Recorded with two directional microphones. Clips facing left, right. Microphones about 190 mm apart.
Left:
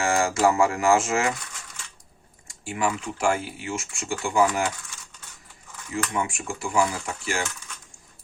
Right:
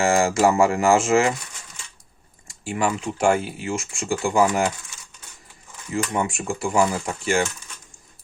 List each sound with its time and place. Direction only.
0.0 s speech: 25° right (ahead or behind)
2.5 s speech: 30° right (ahead or behind)
6.1 s speech: 35° right (ahead or behind)